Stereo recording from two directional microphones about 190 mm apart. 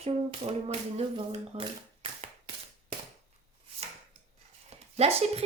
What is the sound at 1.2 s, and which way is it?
Speech, 30° right (ahead or behind).